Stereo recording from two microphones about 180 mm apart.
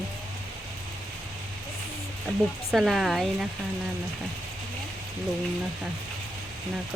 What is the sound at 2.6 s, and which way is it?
Speech, centre (ahead or behind).